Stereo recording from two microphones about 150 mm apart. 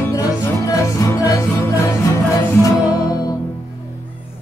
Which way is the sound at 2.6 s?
25° left (ahead or behind).